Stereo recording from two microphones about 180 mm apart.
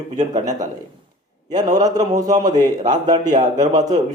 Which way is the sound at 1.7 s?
20° right (ahead or behind).